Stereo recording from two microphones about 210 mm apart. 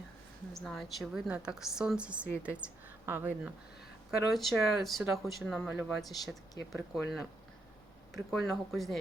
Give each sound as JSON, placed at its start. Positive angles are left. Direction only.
{"t": 0.6, "sound": "speech", "side_deg": 0}